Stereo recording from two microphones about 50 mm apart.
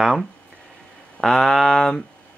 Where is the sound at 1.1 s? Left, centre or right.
Centre.